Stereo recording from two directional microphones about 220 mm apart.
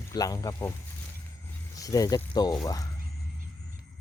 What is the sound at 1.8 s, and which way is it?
Speech, 15° left (ahead or behind).